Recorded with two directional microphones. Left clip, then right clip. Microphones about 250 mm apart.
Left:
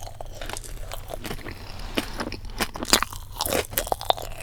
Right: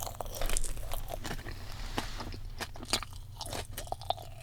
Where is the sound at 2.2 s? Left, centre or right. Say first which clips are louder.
Left 12 dB; left.